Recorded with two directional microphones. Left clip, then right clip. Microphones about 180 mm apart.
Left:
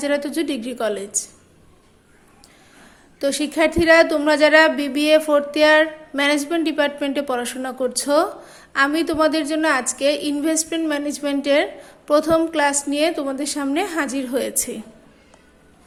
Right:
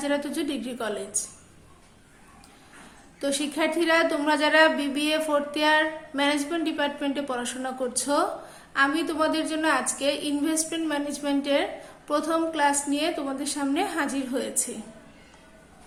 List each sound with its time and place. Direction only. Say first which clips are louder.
0.0 s a woman's voice: left 6 dB; 40° left (ahead or behind)
3.2 s a woman's voice: left 7 dB; 35° left (ahead or behind)